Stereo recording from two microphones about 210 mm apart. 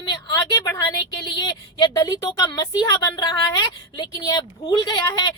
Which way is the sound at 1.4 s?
20° left (ahead or behind).